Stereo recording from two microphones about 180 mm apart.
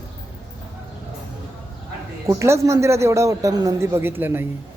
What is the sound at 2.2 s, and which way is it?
Speech, 15° right (ahead or behind).